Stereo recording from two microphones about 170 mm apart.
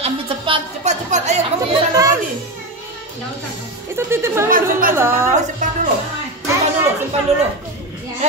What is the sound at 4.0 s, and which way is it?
A woman's voice, 15° right (ahead or behind).